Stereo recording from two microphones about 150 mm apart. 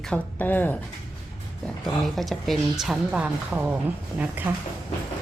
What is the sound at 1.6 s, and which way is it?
A woman's voice, centre (ahead or behind).